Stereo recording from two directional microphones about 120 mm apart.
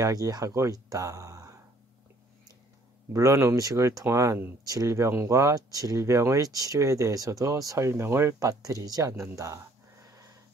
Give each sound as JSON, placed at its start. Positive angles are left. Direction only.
{"t": 0.0, "sound": "speech", "side_deg": -30}
{"t": 3.1, "sound": "speech", "side_deg": -25}
{"t": 10.0, "sound": "a sound", "side_deg": -30}